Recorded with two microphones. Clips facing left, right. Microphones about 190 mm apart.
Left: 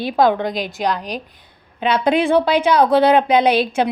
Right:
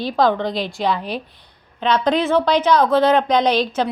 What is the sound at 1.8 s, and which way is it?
A woman's voice, 10° left (ahead or behind).